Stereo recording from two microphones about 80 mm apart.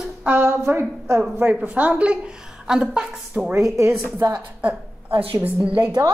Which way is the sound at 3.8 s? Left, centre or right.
Right.